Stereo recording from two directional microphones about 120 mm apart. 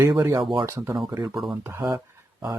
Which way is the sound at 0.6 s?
25° right (ahead or behind).